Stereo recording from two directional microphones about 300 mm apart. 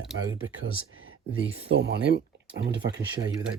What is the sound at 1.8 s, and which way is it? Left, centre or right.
Speech, right.